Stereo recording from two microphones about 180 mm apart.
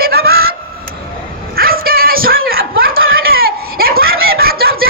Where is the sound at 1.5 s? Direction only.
55° right (ahead or behind).